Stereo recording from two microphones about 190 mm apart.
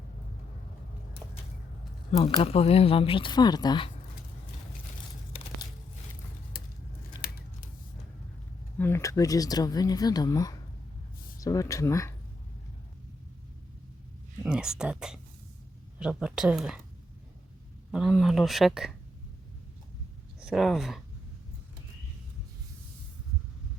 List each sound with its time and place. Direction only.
2.1 s speech: 30° left (ahead or behind)
6.5 s a sound: 50° left (ahead or behind)
7.1 s scissors: 20° left (ahead or behind)
8.8 s speech: 15° left (ahead or behind)
14.4 s speech: 5° right (ahead or behind)
17.9 s speech: centre (ahead or behind)
20.4 s speech: centre (ahead or behind)